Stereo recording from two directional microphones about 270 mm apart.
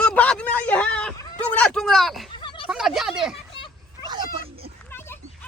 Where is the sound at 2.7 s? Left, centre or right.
Centre.